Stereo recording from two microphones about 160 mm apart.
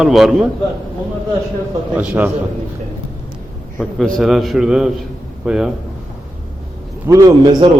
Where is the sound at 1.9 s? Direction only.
10° right (ahead or behind).